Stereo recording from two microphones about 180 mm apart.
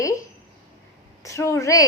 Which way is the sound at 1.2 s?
15° left (ahead or behind).